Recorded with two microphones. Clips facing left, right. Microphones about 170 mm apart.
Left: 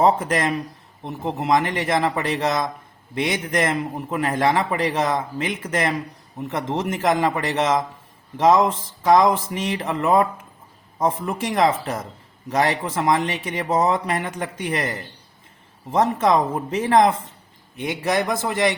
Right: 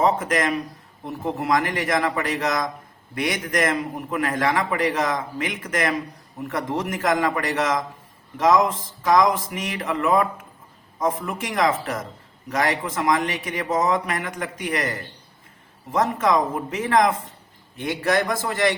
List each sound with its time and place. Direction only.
0.0 s a man's voice: 30° left (ahead or behind)
17.7 s a man's voice: 20° left (ahead or behind)